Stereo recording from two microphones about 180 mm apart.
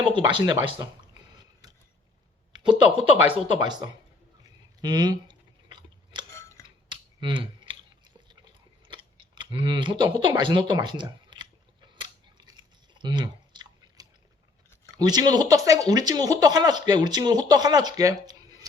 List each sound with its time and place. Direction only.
0.0 s speech: 25° right (ahead or behind)
2.5 s speech: 25° right (ahead or behind)
4.8 s chewing: 25° right (ahead or behind)
8.9 s speech: 25° right (ahead or behind)
11.9 s scissors: 25° right (ahead or behind)
14.9 s speech: 20° right (ahead or behind)